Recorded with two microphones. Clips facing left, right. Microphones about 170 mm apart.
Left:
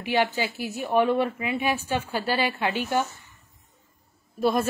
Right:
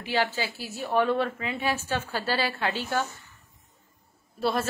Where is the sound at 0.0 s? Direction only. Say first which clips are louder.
Left 3 dB; 15° left (ahead or behind).